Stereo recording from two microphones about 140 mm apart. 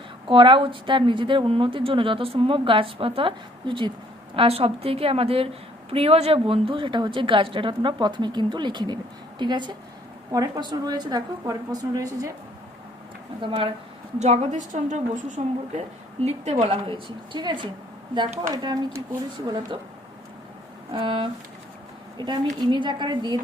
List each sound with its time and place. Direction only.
0.3 s speech: 35° right (ahead or behind)
4.4 s a woman's voice: 45° right (ahead or behind); by 12.3 s 25° right (ahead or behind)
13.4 s speech: 40° right (ahead or behind)
14.2 s a woman's voice: 55° right (ahead or behind)
16.2 s a woman's voice: 50° right (ahead or behind); by 19.8 s 30° right (ahead or behind)
20.9 s speech: 40° right (ahead or behind)